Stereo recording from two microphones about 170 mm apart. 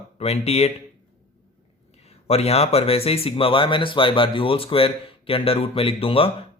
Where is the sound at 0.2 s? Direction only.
40° left (ahead or behind).